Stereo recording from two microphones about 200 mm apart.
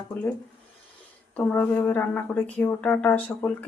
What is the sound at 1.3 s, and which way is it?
Speech, 5° left (ahead or behind).